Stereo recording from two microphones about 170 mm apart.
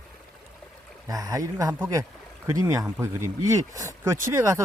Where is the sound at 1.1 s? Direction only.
20° right (ahead or behind).